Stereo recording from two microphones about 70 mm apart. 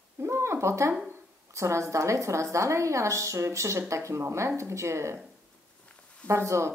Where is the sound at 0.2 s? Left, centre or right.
Right.